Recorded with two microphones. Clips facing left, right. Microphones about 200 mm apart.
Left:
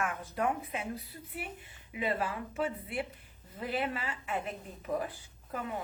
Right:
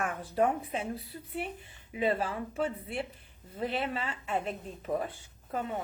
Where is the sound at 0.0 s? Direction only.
30° right (ahead or behind).